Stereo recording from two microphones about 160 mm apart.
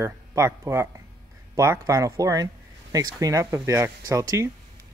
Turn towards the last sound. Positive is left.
turn(degrees=-20)  # may be behind; listen again after turning